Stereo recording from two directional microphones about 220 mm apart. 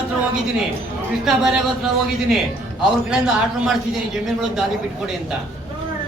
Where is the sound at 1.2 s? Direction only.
Centre (ahead or behind).